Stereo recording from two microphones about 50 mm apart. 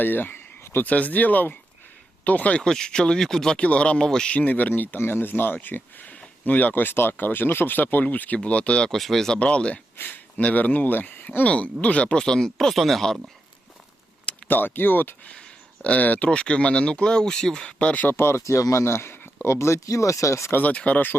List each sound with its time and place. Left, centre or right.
0.0 s a sound: left
0.9 s speech: left
2.6 s speech: centre
3.6 s speech: left
4.4 s speech: left; by 9.0 s centre
9.0 s speech: centre
9.4 s speech: left
10.0 s speech: left
11.4 s speech: left; by 13.1 s centre
14.4 s speech: left
15.3 s speech: left
18.2 s speech: left
18.4 s speech: left
20.6 s speech: left